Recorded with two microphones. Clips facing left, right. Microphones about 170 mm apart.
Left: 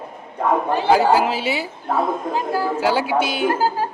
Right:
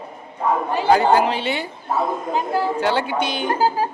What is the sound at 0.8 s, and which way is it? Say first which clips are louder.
Speech: right 1 dB; 5° left (ahead or behind).